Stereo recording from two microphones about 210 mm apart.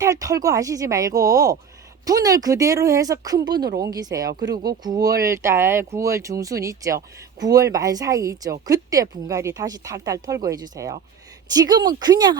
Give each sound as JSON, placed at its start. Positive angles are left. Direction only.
{"t": 0.0, "sound": "speech", "side_deg": -15}